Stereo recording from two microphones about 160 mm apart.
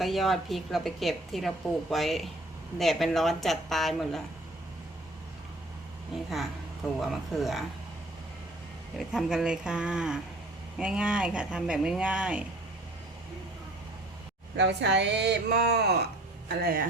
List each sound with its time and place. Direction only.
0.0 s a woman's voice: centre (ahead or behind)
6.8 s a woman's voice: centre (ahead or behind)
9.0 s a woman's voice: centre (ahead or behind)
14.5 s speech: 90° right